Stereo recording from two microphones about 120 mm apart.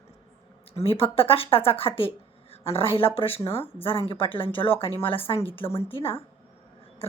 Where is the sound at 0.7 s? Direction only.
50° left (ahead or behind).